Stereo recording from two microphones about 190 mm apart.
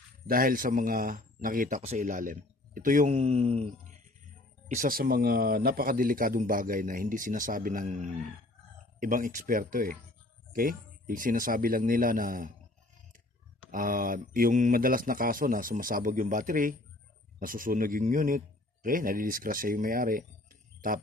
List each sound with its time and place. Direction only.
0.3 s speech: 50° right (ahead or behind); by 4.0 s 30° right (ahead or behind)
4.7 s speech: 45° right (ahead or behind)
13.7 s a man's voice: 45° right (ahead or behind)